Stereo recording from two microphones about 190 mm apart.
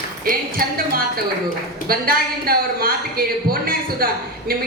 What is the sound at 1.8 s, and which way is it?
A woman's voice, 50° right (ahead or behind).